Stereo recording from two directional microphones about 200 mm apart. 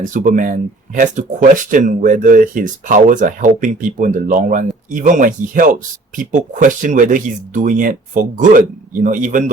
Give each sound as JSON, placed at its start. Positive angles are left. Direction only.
{"t": 0.0, "sound": "speech", "side_deg": -40}